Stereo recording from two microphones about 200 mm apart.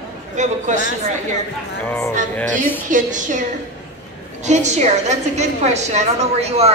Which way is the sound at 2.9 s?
40° right (ahead or behind).